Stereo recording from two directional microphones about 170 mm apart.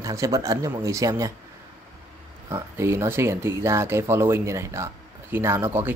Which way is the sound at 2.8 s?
15° right (ahead or behind).